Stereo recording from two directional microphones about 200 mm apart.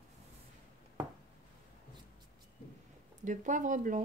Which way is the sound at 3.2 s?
40° right (ahead or behind).